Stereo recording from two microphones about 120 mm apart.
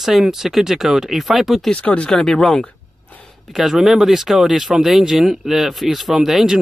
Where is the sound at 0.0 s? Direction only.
5° right (ahead or behind).